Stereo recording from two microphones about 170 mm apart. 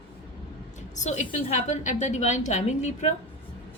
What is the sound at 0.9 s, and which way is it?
A woman's voice, 45° left (ahead or behind).